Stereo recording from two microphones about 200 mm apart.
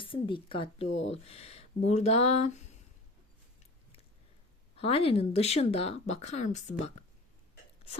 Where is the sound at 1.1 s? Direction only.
30° left (ahead or behind).